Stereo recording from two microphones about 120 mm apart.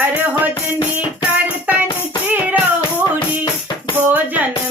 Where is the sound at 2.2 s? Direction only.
15° right (ahead or behind).